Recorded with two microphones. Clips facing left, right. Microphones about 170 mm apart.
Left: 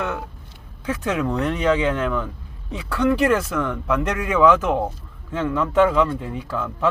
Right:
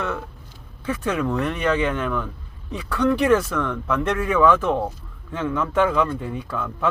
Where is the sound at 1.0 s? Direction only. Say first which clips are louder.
Left 1 dB; 20° left (ahead or behind).